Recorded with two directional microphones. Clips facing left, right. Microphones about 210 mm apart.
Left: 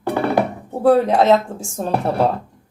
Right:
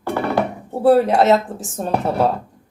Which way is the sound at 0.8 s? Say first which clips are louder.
Even; centre (ahead or behind).